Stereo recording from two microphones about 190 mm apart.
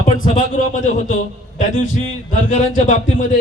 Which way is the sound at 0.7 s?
40° left (ahead or behind).